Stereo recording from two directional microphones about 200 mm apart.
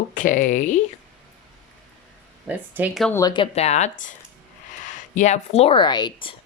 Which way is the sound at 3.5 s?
35° left (ahead or behind).